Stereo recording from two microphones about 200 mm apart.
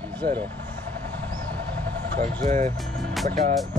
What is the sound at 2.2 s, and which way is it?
Speech, 40° right (ahead or behind).